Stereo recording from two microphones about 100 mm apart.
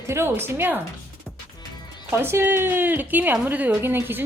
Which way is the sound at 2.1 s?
20° right (ahead or behind).